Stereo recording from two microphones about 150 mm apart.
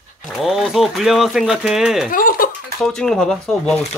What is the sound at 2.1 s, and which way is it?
Giggle, 70° left (ahead or behind).